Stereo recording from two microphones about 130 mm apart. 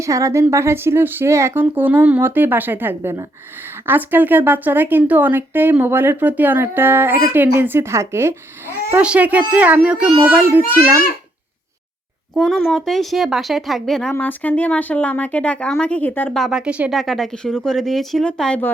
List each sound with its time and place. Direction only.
0.0 s a woman's voice: 25° right (ahead or behind)
8.9 s speech: 10° right (ahead or behind)
12.3 s speech: centre (ahead or behind)
16.4 s speech: 5° right (ahead or behind)
17.0 s speech: centre (ahead or behind)